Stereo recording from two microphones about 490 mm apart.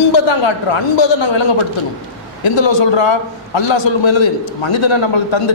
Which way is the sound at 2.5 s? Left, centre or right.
Left.